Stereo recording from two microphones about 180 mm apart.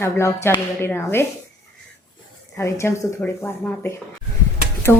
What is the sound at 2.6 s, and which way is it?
Speech, 15° left (ahead or behind).